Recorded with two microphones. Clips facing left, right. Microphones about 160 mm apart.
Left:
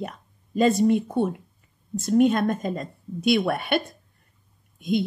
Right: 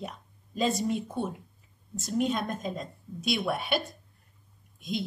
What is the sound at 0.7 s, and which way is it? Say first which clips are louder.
Speech: left 9 dB; centre (ahead or behind).